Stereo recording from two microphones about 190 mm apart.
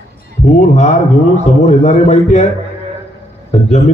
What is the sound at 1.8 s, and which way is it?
Speech, 35° left (ahead or behind).